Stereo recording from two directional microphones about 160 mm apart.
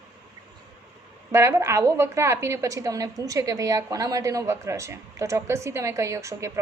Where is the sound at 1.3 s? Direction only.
15° right (ahead or behind).